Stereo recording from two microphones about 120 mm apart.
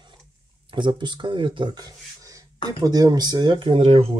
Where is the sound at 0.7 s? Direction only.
40° right (ahead or behind).